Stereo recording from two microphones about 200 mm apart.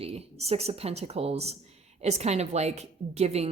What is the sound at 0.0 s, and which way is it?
A woman's voice, 30° right (ahead or behind).